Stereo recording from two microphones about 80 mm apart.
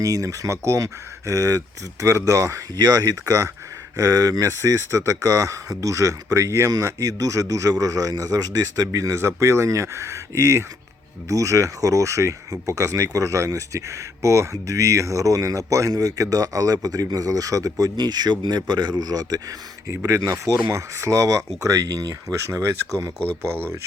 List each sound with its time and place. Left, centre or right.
0.0 s speech: right
20.1 s speech: right